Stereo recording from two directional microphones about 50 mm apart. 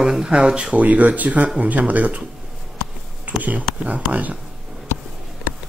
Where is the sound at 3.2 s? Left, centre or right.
Right.